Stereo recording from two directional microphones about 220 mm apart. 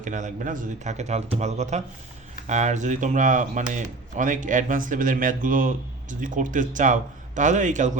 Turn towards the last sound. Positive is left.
turn(degrees=-35)  # may be behind; listen again after turning